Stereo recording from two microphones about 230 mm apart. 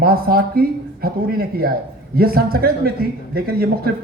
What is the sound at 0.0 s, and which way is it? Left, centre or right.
Speech, right.